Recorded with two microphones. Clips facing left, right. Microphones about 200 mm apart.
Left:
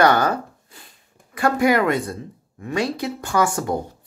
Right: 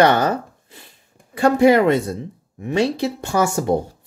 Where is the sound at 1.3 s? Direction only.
25° right (ahead or behind).